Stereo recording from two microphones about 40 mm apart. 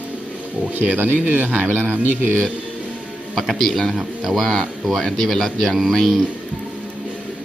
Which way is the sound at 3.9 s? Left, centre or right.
Centre.